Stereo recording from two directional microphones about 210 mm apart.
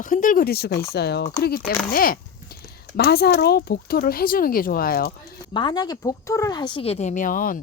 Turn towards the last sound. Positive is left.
turn(degrees=40)  # may be behind; listen again after turning